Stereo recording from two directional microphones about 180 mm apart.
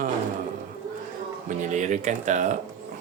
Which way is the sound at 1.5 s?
40° right (ahead or behind).